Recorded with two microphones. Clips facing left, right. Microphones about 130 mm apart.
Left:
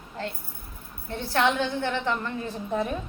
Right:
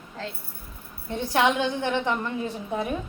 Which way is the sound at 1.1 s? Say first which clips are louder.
Right 2 dB; 15° right (ahead or behind).